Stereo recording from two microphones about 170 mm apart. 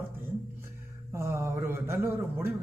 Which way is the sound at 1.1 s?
15° right (ahead or behind).